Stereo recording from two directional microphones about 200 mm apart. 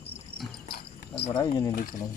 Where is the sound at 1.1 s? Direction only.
30° left (ahead or behind).